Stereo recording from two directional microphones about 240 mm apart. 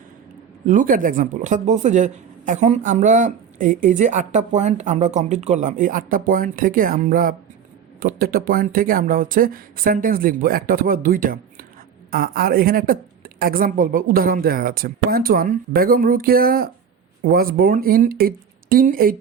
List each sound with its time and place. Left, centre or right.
0.7 s a woman's voice: right